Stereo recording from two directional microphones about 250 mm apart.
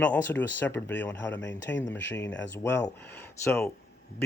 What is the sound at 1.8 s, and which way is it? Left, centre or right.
Speech, left.